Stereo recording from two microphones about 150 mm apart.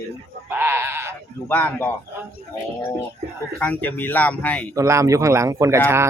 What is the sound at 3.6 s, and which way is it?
Speech, 10° left (ahead or behind).